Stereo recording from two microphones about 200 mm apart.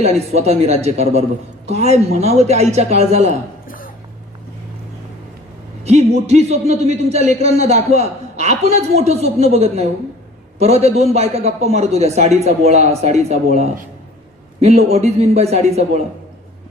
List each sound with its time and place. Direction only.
0.0 s a man's voice: 30° right (ahead or behind)
5.8 s a man's voice: 30° right (ahead or behind)